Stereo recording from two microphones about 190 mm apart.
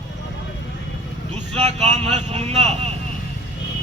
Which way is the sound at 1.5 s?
35° right (ahead or behind).